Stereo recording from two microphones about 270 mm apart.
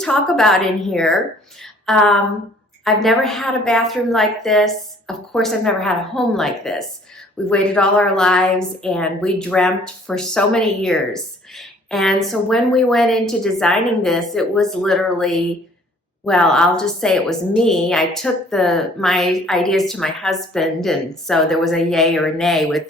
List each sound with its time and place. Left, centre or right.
0.0 s a woman's voice: centre